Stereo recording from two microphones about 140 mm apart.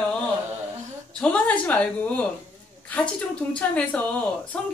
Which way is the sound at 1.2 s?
10° left (ahead or behind).